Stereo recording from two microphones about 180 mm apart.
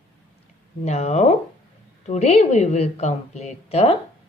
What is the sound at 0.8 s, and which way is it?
A woman's voice, 35° left (ahead or behind).